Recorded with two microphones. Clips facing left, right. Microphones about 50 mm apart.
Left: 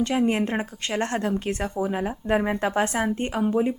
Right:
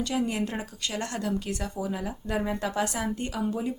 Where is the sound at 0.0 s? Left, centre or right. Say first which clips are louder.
Left 6 dB; left.